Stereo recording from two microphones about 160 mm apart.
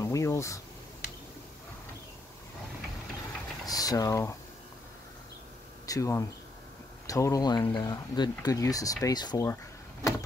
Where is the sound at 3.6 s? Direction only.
25° left (ahead or behind).